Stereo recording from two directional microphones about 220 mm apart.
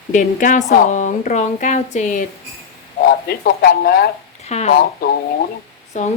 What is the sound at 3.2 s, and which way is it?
Speech, 45° left (ahead or behind).